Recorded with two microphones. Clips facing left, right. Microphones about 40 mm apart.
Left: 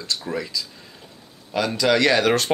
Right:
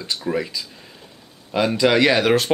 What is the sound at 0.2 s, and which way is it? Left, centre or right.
Speech, centre.